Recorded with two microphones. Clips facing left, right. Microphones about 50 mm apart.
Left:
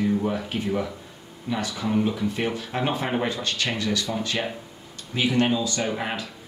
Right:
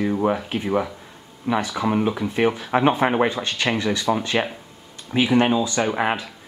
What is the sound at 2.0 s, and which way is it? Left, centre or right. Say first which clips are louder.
Speech: right 5 dB; right.